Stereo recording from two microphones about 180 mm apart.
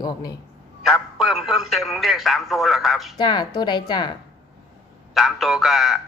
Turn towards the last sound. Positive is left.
turn(degrees=0)  # may be behind; listen again after turning